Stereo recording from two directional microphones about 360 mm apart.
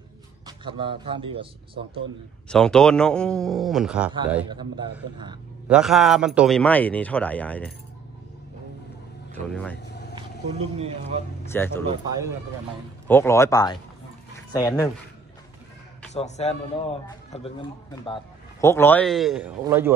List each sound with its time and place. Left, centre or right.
0.5 s a man's voice: centre
2.5 s a man's voice: centre
5.8 s a man's voice: centre
9.3 s speech: centre
11.4 s a man's voice: centre
11.8 s a man's voice: centre
13.1 s a man's voice: centre
16.1 s a man's voice: centre